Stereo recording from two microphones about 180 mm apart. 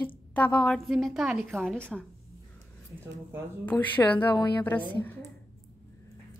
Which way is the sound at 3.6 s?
10° left (ahead or behind).